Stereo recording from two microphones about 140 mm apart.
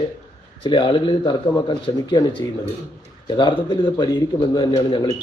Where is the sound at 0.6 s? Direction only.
40° left (ahead or behind).